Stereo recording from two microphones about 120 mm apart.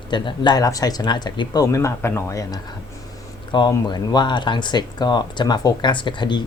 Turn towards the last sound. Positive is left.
turn(degrees=40)  # may be behind; listen again after turning